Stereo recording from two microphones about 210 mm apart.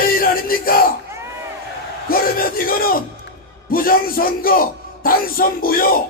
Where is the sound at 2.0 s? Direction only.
45° left (ahead or behind).